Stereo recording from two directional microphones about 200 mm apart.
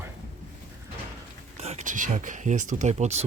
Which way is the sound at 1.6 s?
35° right (ahead or behind).